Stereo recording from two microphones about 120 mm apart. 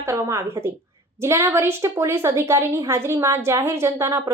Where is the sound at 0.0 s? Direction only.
25° right (ahead or behind).